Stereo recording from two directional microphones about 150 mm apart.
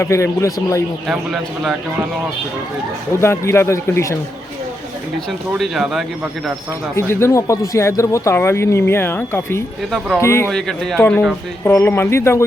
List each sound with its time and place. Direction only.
0.0 s a man's voice: 20° left (ahead or behind)
1.0 s speech: 5° right (ahead or behind)
3.2 s speech: 15° left (ahead or behind)
5.5 s speech: 5° right (ahead or behind)
6.9 s speech: 20° left (ahead or behind)
10.5 s speech: 5° left (ahead or behind)